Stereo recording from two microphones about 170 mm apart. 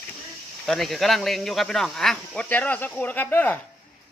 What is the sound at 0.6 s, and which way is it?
Speech, centre (ahead or behind).